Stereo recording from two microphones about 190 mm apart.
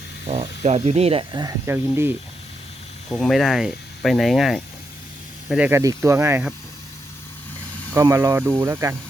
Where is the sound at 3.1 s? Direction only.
Centre (ahead or behind).